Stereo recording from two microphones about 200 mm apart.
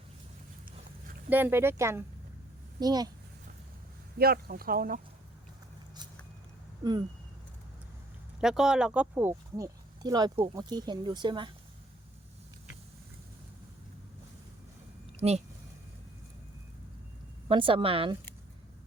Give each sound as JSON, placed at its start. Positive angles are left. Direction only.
{"t": 1.3, "sound": "speech", "side_deg": -10}
{"t": 4.2, "sound": "speech", "side_deg": -50}
{"t": 6.8, "sound": "speech", "side_deg": -20}
{"t": 8.4, "sound": "speech", "side_deg": -5}
{"t": 15.2, "sound": "speech", "side_deg": -25}
{"t": 17.5, "sound": "speech", "side_deg": -25}